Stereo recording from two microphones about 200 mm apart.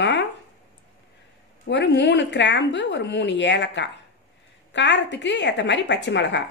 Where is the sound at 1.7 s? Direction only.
60° left (ahead or behind).